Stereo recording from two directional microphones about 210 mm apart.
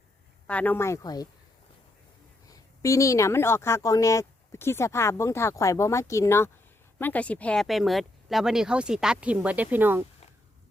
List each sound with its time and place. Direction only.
0.4 s speech: 5° left (ahead or behind)
2.5 s speech: 15° left (ahead or behind); by 10.0 s 10° right (ahead or behind)